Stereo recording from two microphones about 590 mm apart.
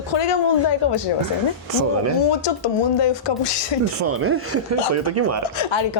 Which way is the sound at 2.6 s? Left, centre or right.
Left.